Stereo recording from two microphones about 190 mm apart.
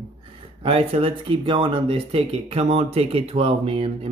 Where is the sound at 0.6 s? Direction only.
30° right (ahead or behind).